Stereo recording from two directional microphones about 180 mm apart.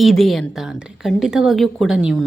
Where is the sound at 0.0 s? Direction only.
Centre (ahead or behind).